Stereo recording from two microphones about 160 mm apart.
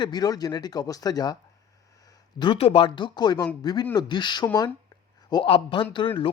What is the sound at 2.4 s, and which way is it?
Speech, 35° left (ahead or behind).